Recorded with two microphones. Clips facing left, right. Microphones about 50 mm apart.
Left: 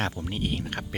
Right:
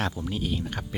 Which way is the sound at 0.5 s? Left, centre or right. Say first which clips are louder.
Even; left.